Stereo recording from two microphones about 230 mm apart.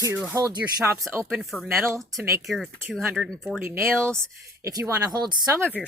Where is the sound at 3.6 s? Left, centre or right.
Centre.